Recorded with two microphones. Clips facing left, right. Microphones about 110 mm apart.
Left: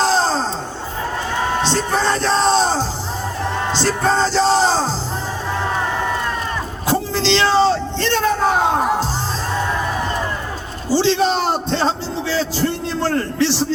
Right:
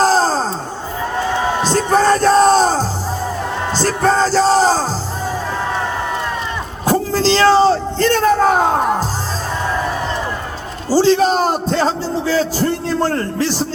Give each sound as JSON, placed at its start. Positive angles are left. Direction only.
{"t": 0.0, "sound": "wail", "side_deg": -40}
{"t": 1.7, "sound": "music", "side_deg": -40}
{"t": 6.8, "sound": "a sound", "side_deg": -40}
{"t": 10.8, "sound": "a man's voice", "side_deg": -40}
{"t": 11.7, "sound": "a man's voice", "side_deg": 30}
{"t": 12.2, "sound": "a man's voice", "side_deg": -40}